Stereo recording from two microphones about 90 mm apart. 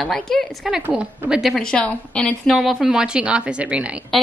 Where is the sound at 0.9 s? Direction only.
10° right (ahead or behind).